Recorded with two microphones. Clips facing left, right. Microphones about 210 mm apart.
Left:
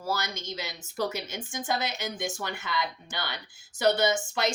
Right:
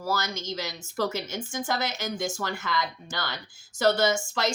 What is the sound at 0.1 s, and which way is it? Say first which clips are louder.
Speech: right 2 dB; 15° left (ahead or behind).